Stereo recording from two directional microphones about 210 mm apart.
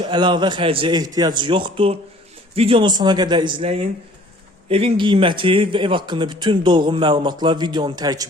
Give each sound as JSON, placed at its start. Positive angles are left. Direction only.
{"t": 0.0, "sound": "a man's voice", "side_deg": -20}